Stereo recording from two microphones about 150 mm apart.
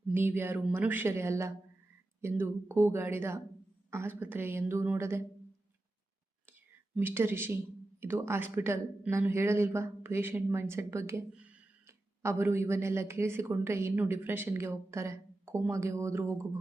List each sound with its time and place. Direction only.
0.1 s speech: 15° right (ahead or behind)
6.9 s speech: 15° right (ahead or behind)